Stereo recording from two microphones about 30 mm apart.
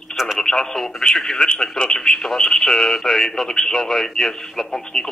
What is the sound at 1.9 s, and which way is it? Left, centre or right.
Speech, centre.